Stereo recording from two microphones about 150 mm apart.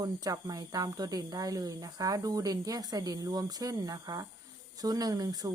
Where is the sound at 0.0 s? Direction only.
25° right (ahead or behind).